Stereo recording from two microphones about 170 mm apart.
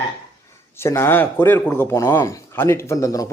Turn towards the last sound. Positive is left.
turn(degrees=20)  # may be behind; listen again after turning